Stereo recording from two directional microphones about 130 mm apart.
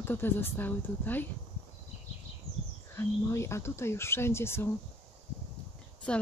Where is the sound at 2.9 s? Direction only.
20° left (ahead or behind).